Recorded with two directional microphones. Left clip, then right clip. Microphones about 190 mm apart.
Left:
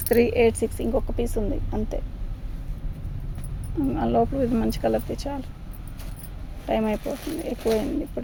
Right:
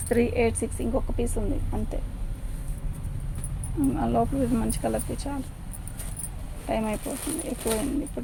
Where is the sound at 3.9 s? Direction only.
55° left (ahead or behind).